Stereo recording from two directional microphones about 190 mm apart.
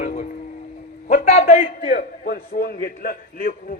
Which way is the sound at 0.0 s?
40° left (ahead or behind).